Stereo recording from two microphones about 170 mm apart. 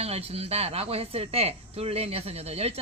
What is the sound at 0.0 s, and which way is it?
Speech, 35° right (ahead or behind).